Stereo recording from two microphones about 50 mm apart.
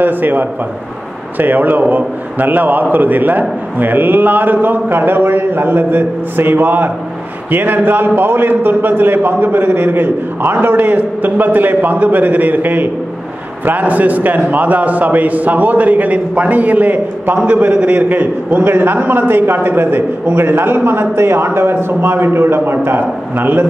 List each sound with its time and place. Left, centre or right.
0.0 s a man's voice: right